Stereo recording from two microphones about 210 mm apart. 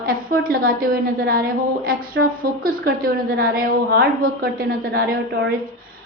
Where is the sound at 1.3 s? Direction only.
45° right (ahead or behind).